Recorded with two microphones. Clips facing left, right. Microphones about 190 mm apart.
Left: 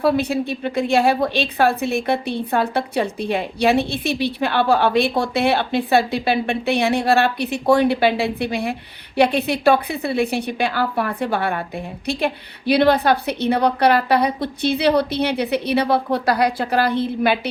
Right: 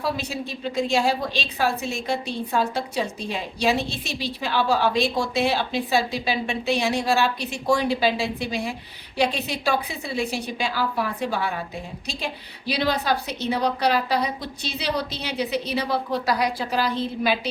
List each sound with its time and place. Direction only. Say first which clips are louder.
0.0 s a woman's voice: left 9 dB; 60° left (ahead or behind)